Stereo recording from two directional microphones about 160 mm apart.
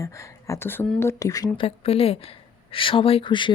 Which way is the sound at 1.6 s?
35° left (ahead or behind).